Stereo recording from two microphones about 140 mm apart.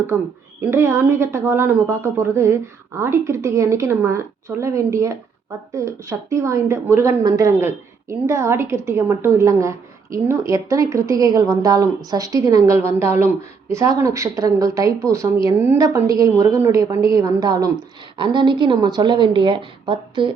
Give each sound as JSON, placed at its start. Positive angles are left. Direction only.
{"t": 0.6, "sound": "a woman's voice", "side_deg": -20}